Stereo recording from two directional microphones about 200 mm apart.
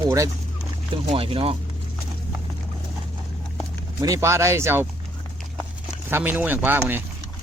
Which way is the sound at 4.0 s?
15° right (ahead or behind).